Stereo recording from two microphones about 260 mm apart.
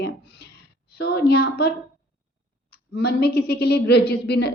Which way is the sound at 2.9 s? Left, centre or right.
Left.